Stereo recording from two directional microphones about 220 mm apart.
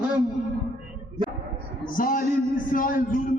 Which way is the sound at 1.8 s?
40° left (ahead or behind).